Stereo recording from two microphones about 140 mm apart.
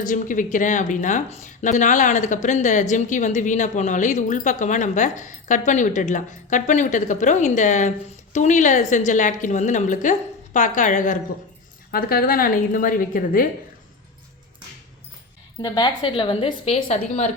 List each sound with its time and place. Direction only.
0.0 s a woman's voice: 65° left (ahead or behind)
11.9 s a woman's voice: 90° left
15.6 s a woman's voice: 30° left (ahead or behind); by 17.3 s 55° left (ahead or behind)